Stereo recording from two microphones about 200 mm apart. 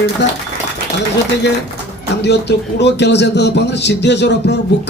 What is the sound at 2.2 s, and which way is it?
A man's voice, 55° left (ahead or behind).